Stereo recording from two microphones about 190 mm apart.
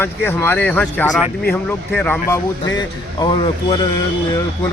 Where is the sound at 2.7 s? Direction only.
20° left (ahead or behind).